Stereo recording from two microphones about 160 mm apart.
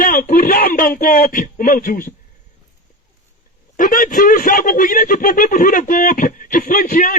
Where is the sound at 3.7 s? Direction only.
60° left (ahead or behind).